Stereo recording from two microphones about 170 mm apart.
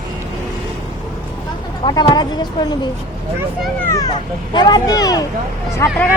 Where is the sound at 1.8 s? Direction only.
25° left (ahead or behind).